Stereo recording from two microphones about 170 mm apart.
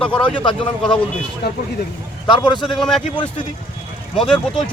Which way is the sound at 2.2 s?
25° left (ahead or behind).